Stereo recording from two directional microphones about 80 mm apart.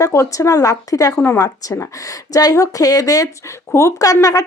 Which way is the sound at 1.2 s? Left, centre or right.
Left.